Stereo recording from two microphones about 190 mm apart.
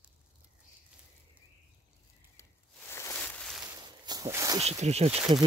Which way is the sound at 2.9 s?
15° left (ahead or behind).